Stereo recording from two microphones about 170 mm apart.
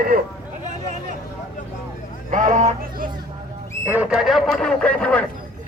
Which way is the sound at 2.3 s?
45° right (ahead or behind).